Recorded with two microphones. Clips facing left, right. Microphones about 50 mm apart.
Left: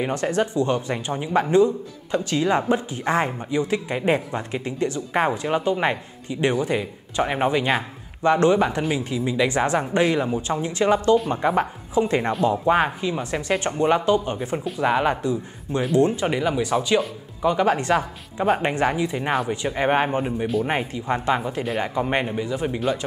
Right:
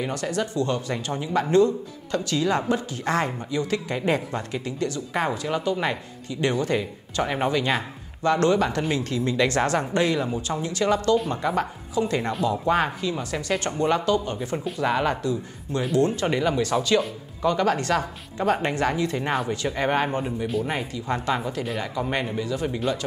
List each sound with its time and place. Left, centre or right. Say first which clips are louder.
0.0 s speech: left 4 dB; left